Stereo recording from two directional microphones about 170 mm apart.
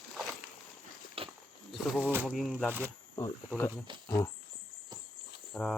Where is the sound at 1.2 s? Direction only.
35° right (ahead or behind).